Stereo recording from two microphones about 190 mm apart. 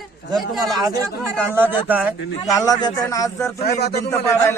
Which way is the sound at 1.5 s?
10° right (ahead or behind).